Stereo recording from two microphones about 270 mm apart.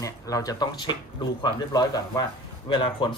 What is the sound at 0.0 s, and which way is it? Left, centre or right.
Speech, centre.